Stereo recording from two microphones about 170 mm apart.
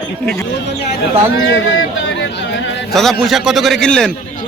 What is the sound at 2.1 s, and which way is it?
Speech, 90° left.